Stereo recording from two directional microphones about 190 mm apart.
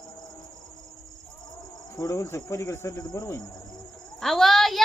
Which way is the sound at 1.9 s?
15° left (ahead or behind).